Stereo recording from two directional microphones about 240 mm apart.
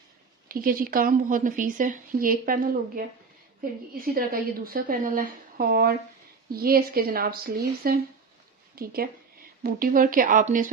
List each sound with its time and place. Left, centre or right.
0.5 s a woman's voice: right
3.9 s a woman's voice: right